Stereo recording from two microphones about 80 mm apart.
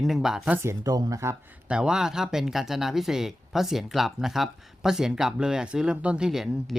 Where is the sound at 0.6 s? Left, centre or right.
Right.